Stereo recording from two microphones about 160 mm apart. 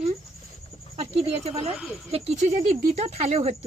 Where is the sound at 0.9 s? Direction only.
40° right (ahead or behind).